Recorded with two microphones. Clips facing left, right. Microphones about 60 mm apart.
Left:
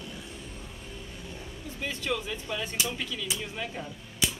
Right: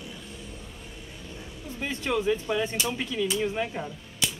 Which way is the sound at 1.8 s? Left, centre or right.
Right.